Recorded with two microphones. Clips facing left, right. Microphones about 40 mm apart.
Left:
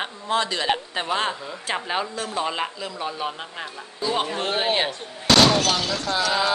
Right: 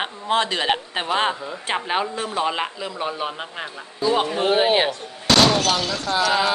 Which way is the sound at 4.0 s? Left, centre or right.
Centre.